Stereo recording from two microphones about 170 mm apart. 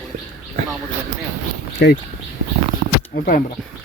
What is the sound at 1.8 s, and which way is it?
Speech, 75° left (ahead or behind).